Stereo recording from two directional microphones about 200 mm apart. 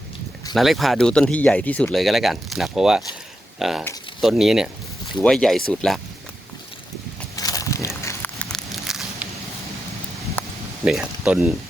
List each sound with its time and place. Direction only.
0.5 s speech: centre (ahead or behind)
7.3 s a sound: 15° left (ahead or behind)
8.0 s walk: 10° left (ahead or behind)
10.8 s speech: 5° right (ahead or behind)